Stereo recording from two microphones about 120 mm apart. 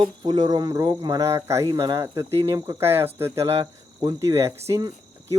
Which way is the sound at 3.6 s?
40° right (ahead or behind).